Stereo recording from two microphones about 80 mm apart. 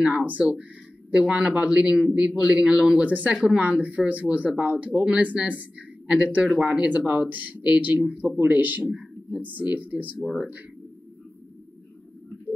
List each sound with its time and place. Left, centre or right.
0.0 s speech: centre